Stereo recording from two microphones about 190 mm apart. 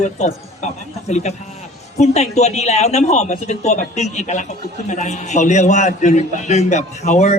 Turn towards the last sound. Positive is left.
turn(degrees=35)  # may be behind; listen again after turning